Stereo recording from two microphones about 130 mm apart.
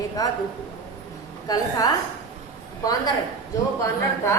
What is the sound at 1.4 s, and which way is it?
Speech, 30° left (ahead or behind).